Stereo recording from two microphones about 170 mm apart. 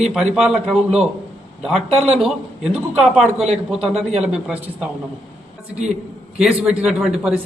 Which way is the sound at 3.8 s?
40° right (ahead or behind).